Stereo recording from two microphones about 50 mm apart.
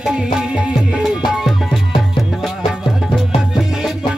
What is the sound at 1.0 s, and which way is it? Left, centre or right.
Music, centre.